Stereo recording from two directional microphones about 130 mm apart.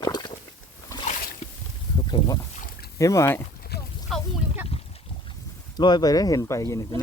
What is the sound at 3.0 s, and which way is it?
Speech, 25° left (ahead or behind).